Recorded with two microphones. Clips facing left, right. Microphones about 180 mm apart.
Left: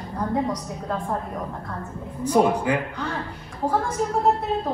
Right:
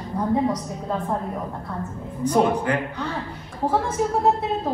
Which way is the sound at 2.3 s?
10° left (ahead or behind).